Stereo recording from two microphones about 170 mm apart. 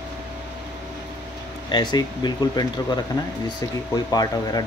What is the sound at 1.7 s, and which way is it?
Speech, 25° left (ahead or behind).